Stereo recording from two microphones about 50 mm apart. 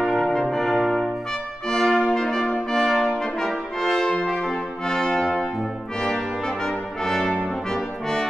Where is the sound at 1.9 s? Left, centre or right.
Centre.